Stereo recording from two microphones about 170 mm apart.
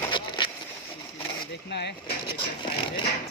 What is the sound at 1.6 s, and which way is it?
Speech, 80° left.